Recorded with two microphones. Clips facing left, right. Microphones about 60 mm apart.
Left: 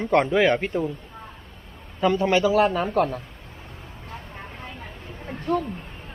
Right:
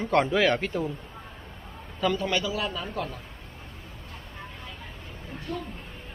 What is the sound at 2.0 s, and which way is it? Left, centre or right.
Speech, centre.